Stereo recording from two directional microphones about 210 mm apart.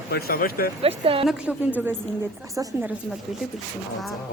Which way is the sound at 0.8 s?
25° right (ahead or behind).